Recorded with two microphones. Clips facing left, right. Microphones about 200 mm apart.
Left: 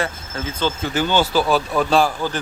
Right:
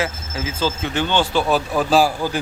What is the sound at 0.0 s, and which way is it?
Speech, 5° right (ahead or behind).